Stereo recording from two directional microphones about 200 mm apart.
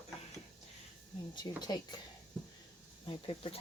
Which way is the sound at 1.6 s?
20° left (ahead or behind).